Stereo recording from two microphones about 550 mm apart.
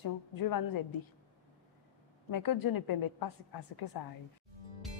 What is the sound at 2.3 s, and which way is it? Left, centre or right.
Speech, left.